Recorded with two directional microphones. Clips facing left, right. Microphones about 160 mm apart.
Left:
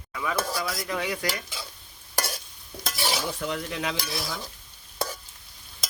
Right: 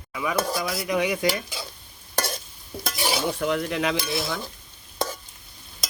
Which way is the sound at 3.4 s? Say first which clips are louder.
Right 6 dB; 60° right (ahead or behind).